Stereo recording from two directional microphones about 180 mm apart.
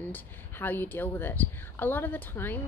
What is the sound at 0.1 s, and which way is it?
Speech, 10° left (ahead or behind).